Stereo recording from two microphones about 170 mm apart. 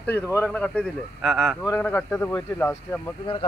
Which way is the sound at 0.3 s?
10° left (ahead or behind).